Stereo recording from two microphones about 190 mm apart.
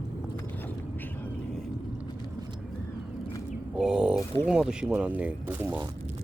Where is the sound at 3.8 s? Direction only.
5° right (ahead or behind).